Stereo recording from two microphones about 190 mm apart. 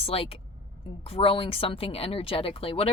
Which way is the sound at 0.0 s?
30° left (ahead or behind).